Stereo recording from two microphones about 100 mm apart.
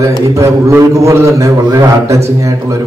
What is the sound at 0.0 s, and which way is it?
A man's voice, 30° right (ahead or behind).